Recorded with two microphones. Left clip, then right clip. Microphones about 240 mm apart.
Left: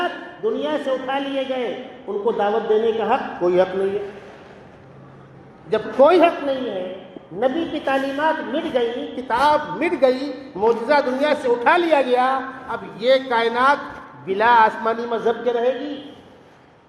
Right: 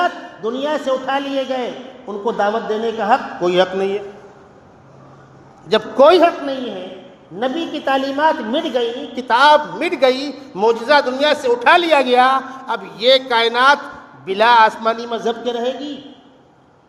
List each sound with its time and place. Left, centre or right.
0.0 s a man's voice: right
5.6 s a man's voice: right